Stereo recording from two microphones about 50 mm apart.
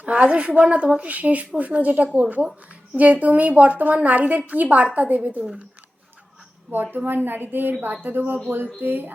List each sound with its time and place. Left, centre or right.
0.0 s a woman's voice: right
6.9 s a woman's voice: right